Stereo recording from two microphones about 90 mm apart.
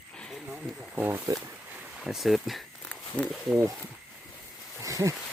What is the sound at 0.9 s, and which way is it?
Speech, 20° right (ahead or behind).